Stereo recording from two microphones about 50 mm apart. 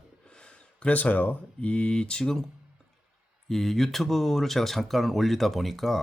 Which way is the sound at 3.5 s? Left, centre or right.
Centre.